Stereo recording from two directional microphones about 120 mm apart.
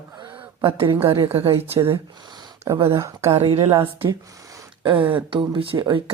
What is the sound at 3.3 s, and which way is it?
Speech, 50° right (ahead or behind).